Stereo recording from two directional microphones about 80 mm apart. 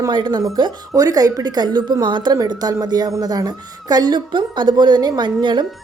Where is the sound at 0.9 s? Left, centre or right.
Right.